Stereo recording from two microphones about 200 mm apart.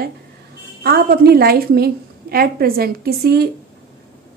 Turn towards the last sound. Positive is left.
turn(degrees=-50)  # may be behind; listen again after turning